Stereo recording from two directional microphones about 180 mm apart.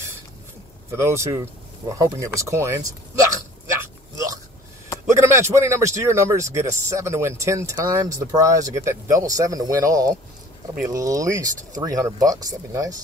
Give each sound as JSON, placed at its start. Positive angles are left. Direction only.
{"t": 0.9, "sound": "a man's voice", "side_deg": -15}
{"t": 5.1, "sound": "a man's voice", "side_deg": -15}